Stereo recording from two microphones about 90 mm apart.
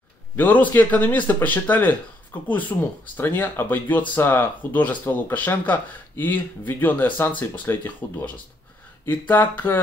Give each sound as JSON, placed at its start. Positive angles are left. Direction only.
{"t": 0.4, "sound": "speech", "side_deg": 20}